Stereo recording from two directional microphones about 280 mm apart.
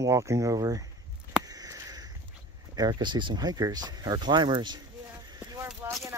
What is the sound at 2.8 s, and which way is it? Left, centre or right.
Speech, centre.